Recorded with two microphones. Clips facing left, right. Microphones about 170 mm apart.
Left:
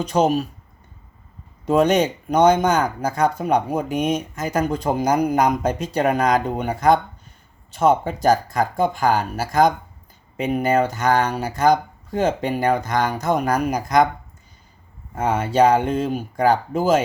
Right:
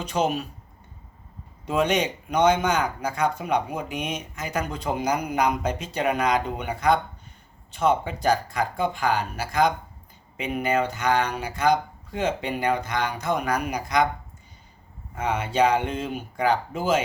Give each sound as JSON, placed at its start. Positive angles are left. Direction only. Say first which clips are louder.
{"t": 0.0, "sound": "speech", "louder": "left 6 dB", "side_deg": 40}
{"t": 1.6, "sound": "speech", "louder": "left 6 dB", "side_deg": 40}
{"t": 15.1, "sound": "speech", "louder": "left 5 dB", "side_deg": 45}